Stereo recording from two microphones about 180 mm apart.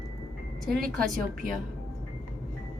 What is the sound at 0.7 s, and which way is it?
Speech, 55° right (ahead or behind).